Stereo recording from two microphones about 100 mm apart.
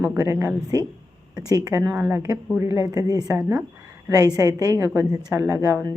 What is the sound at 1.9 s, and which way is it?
Speech, 20° right (ahead or behind).